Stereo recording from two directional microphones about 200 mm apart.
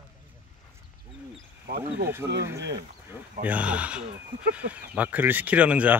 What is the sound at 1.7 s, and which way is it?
Cricket, 50° right (ahead or behind).